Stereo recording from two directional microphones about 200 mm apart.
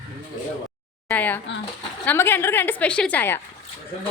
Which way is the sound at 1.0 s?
10° left (ahead or behind).